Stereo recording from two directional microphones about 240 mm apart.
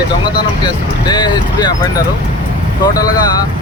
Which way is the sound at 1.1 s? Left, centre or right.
Centre.